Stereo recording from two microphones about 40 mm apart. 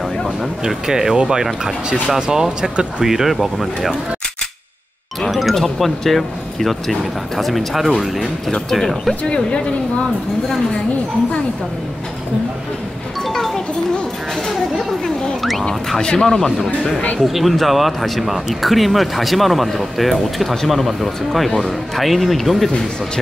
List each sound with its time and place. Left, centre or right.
0.4 s speech: centre
1.1 s speech: right
3.1 s speech: centre
5.3 s speech: centre
9.2 s speech: left
13.3 s music: centre
16.0 s speech: centre
17.2 s speech: centre